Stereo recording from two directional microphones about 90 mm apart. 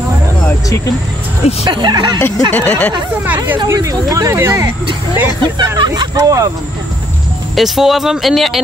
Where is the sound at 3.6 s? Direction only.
35° right (ahead or behind).